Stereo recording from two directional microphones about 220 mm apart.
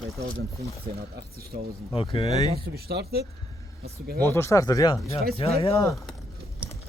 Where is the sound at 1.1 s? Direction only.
45° right (ahead or behind).